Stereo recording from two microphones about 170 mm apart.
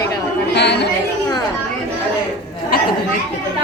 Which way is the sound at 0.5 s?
90° left.